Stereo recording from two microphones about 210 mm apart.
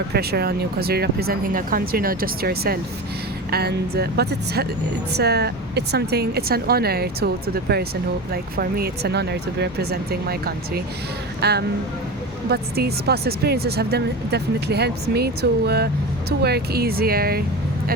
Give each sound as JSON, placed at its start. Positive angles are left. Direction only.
{"t": 0.1, "sound": "speech", "side_deg": -50}